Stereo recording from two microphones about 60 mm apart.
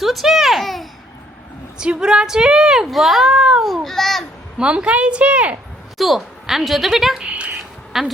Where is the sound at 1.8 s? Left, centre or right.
Centre.